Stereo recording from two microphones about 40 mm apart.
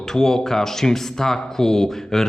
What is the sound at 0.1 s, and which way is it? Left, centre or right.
Speech, centre.